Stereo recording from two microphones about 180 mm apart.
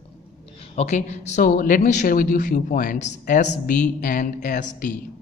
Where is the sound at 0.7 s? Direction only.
40° left (ahead or behind).